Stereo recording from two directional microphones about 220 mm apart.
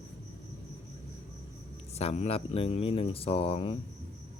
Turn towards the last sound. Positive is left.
turn(degrees=25)  # may be behind; listen again after turning